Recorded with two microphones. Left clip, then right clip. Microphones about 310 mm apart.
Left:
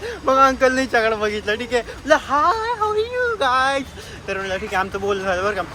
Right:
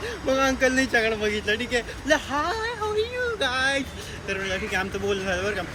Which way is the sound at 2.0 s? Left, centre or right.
Centre.